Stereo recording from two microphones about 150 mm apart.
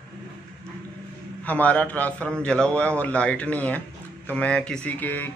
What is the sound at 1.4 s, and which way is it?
Speech, 10° left (ahead or behind).